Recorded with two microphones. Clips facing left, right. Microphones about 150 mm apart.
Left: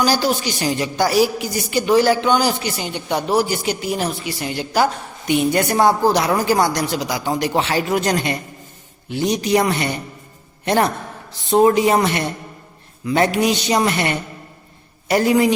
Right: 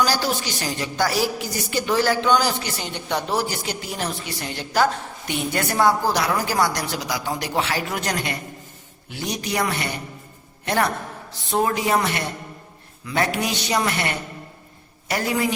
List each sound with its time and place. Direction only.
0.0 s a woman's voice: 20° left (ahead or behind)
11.5 s speech: 25° left (ahead or behind)